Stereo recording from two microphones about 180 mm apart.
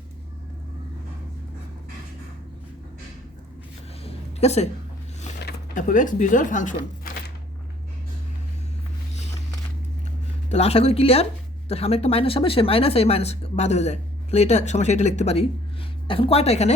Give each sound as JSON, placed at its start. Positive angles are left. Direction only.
{"t": 4.0, "sound": "a sound", "side_deg": 35}
{"t": 5.7, "sound": "speech", "side_deg": 45}
{"t": 10.5, "sound": "speech", "side_deg": 35}